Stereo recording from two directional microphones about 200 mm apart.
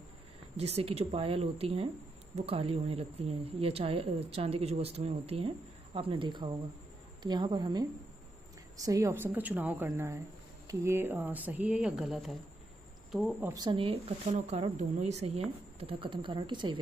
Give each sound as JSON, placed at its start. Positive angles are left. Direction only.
{"t": 0.6, "sound": "speech", "side_deg": -30}
{"t": 8.8, "sound": "speech", "side_deg": -15}
{"t": 13.5, "sound": "speech", "side_deg": -20}